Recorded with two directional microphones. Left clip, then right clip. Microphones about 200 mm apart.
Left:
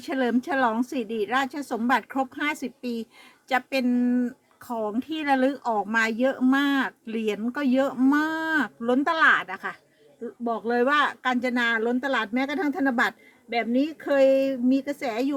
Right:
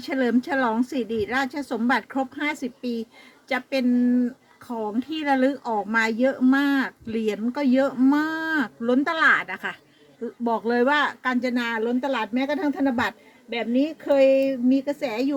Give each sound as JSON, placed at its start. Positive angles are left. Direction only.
{"t": 0.0, "sound": "a woman's voice", "side_deg": 15}